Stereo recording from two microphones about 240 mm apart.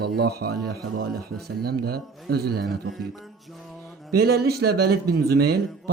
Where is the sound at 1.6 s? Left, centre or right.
Right.